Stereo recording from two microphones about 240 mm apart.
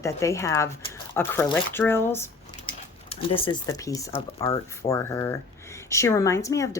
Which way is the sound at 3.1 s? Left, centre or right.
Left.